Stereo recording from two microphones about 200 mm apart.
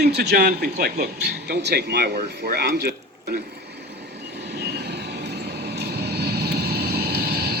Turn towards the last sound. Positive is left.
turn(degrees=-55)  # may be behind; listen again after turning